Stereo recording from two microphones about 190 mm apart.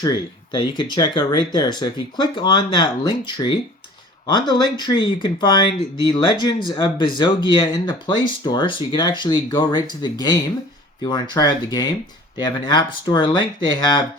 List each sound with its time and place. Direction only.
0.0 s speech: 25° left (ahead or behind)